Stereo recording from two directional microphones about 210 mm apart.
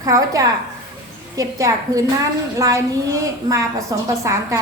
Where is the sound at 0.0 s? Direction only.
15° right (ahead or behind).